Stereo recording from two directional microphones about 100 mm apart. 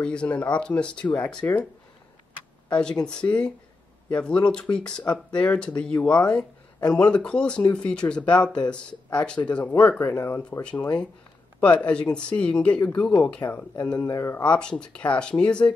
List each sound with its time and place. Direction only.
0.0 s speech: 10° left (ahead or behind)
2.7 s speech: 10° left (ahead or behind)
10.2 s speech: 25° left (ahead or behind)
10.6 s speech: 10° left (ahead or behind)
13.9 s speech: 30° left (ahead or behind)
14.4 s speech: 10° left (ahead or behind)